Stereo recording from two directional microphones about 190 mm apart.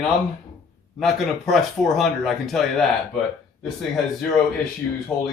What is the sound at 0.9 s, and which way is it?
Speech, centre (ahead or behind).